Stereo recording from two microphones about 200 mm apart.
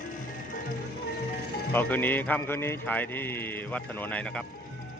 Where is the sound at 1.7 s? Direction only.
10° left (ahead or behind).